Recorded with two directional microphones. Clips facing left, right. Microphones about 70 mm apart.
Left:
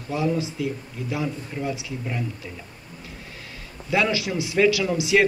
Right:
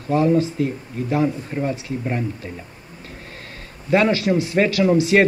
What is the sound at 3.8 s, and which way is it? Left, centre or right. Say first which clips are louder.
Speech: right 6 dB; right.